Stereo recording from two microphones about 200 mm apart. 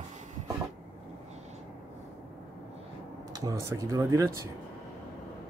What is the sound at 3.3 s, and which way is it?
Speech, 15° right (ahead or behind).